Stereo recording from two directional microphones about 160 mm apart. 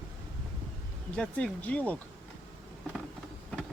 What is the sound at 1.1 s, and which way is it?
Speech, 5° left (ahead or behind).